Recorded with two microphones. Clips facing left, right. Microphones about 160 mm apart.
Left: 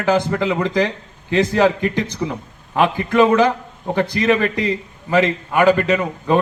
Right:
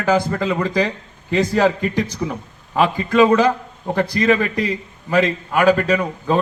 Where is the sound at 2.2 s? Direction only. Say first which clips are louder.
Left 1 dB; 5° left (ahead or behind).